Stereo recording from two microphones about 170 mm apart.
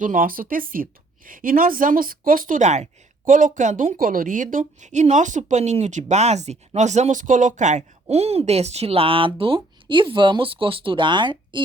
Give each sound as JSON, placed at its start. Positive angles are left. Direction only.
{"t": 0.0, "sound": "a woman's voice", "side_deg": -50}